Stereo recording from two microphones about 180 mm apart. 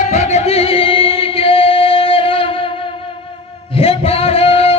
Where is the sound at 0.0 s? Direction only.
35° left (ahead or behind).